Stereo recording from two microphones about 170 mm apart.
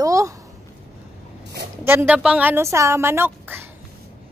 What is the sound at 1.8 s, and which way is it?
A woman's voice, 10° right (ahead or behind).